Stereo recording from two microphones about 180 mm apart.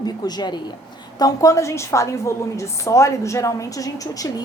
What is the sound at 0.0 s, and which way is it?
A woman's voice, 25° left (ahead or behind).